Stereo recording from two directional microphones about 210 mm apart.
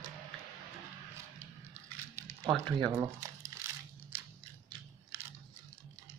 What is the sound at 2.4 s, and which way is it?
Speech, 15° right (ahead or behind).